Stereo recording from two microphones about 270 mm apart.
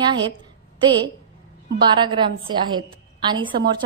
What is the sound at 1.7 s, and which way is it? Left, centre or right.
A woman's voice, centre.